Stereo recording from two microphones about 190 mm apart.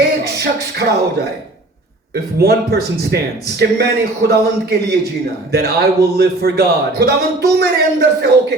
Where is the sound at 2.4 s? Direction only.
55° right (ahead or behind).